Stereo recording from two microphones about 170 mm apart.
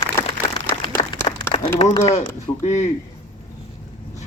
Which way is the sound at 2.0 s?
40° left (ahead or behind).